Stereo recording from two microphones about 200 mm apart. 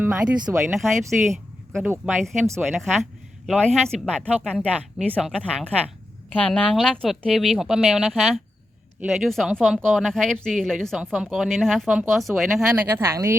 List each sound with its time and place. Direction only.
0.0 s a woman's voice: 5° right (ahead or behind)